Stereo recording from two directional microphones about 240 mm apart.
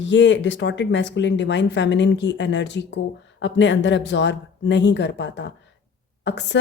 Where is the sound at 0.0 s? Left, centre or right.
Left.